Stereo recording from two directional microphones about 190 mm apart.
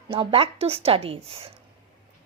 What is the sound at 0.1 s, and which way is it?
A woman's voice, 30° right (ahead or behind).